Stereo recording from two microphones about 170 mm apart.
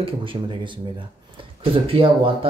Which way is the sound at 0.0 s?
30° right (ahead or behind).